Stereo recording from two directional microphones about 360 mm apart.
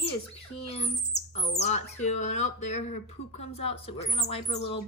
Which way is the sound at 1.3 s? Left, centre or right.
Centre.